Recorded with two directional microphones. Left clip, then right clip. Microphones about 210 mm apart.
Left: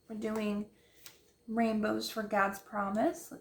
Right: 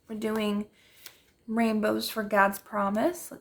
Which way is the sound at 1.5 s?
45° right (ahead or behind).